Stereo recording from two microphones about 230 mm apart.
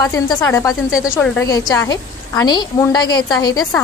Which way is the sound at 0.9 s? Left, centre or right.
Centre.